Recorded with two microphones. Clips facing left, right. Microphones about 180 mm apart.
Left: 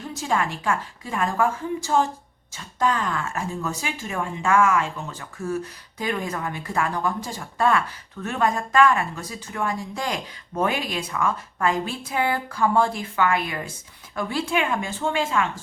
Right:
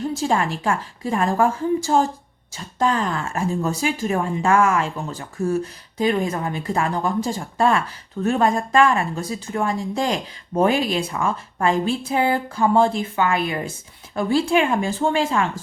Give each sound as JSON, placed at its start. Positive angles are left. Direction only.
{"t": 0.1, "sound": "speech", "side_deg": -30}